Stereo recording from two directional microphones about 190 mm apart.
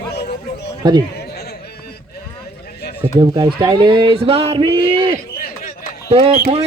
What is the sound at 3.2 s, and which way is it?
Speech, 20° right (ahead or behind).